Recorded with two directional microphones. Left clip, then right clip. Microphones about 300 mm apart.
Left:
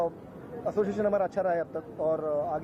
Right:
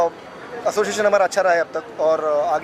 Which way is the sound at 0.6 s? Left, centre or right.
Centre.